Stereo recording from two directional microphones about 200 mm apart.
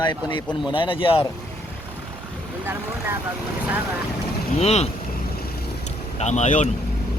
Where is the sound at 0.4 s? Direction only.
Centre (ahead or behind).